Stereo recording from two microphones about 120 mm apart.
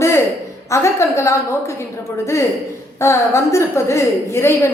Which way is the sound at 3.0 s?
25° left (ahead or behind).